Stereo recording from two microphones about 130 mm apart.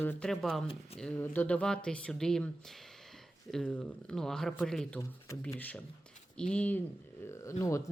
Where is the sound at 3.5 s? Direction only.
5° left (ahead or behind).